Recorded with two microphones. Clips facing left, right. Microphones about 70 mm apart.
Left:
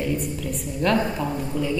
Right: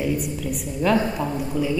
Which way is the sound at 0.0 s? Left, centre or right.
Centre.